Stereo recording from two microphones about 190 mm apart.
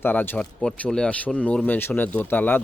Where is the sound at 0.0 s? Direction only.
10° left (ahead or behind).